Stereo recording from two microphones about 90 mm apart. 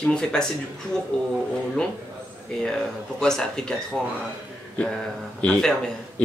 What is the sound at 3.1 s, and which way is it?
Speech, 5° left (ahead or behind).